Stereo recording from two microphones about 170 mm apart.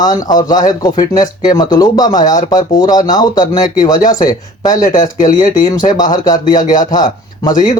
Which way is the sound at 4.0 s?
50° left (ahead or behind).